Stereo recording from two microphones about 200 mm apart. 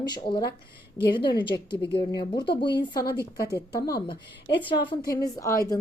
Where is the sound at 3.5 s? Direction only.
50° left (ahead or behind).